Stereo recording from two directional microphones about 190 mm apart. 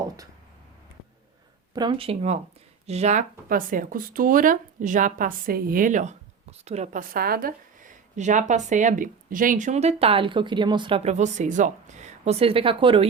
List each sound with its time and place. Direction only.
1.7 s speech: 25° right (ahead or behind)
7.1 s speech: 50° right (ahead or behind); by 13.1 s 30° right (ahead or behind)